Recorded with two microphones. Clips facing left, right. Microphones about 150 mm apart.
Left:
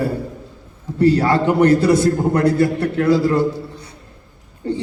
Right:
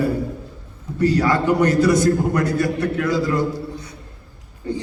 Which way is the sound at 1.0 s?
30° left (ahead or behind).